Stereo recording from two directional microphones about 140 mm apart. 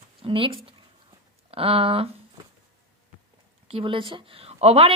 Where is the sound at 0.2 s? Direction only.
40° right (ahead or behind).